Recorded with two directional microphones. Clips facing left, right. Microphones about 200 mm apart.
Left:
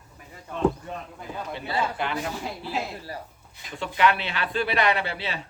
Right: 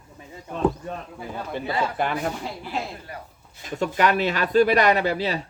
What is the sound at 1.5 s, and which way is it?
Speech, 50° right (ahead or behind).